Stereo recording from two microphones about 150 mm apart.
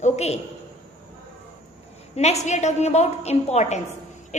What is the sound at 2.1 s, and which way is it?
A woman's voice, 45° left (ahead or behind).